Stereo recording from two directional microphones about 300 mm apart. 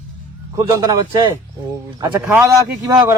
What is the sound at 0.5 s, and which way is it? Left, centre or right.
A man's voice, centre.